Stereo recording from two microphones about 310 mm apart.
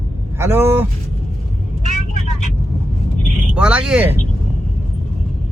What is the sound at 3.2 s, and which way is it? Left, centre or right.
Vehicle, centre.